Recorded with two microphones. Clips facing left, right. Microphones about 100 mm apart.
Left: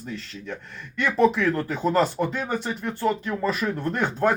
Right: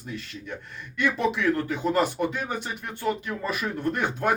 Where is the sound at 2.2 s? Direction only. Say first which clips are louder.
Left 1 dB; 15° right (ahead or behind).